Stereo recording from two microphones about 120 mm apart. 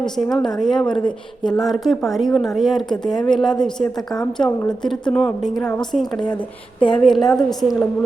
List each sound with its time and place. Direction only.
0.0 s a woman's voice: 5° left (ahead or behind)
1.0 s speech: 40° left (ahead or behind)
1.6 s a woman's voice: centre (ahead or behind)